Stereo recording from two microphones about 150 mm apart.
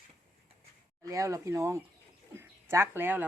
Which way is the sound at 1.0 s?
20° right (ahead or behind).